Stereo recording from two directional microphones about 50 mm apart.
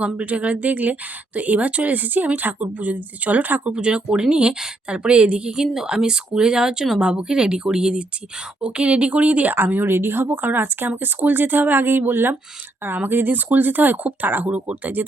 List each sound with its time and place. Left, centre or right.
0.0 s speech: right
9.9 s speech: right